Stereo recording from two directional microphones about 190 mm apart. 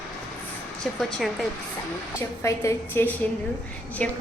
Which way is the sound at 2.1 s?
15° left (ahead or behind).